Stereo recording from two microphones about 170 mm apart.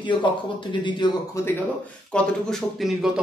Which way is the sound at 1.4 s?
15° left (ahead or behind).